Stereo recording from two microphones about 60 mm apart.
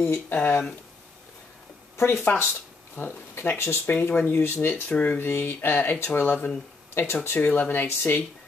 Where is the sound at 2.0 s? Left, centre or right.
Left.